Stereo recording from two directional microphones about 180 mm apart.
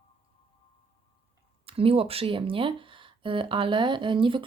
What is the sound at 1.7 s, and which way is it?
Speech, 30° right (ahead or behind).